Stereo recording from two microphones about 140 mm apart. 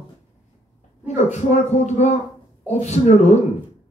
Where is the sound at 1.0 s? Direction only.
55° left (ahead or behind).